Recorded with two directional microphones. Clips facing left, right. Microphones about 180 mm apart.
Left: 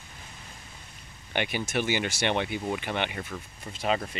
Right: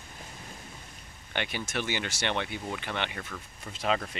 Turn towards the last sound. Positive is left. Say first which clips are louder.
# left 1 dB
turn(degrees=5)  # may be behind; listen again after turning